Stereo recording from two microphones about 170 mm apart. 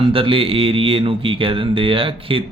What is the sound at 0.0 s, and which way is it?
Mantra, 30° right (ahead or behind).